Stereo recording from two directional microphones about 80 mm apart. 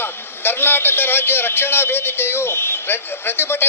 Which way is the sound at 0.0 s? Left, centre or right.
Left.